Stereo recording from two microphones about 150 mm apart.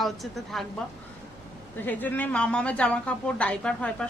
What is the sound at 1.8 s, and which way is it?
A woman's voice, 10° left (ahead or behind).